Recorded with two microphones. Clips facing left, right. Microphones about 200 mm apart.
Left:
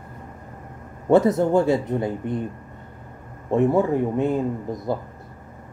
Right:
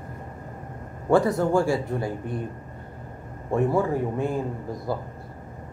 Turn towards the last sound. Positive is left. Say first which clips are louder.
# left 4 dB
turn(degrees=20)  # may be behind; listen again after turning